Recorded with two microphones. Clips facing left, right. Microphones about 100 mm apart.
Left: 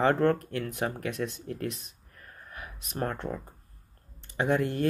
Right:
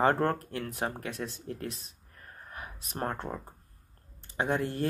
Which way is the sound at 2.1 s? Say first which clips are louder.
Right 1 dB; 30° right (ahead or behind).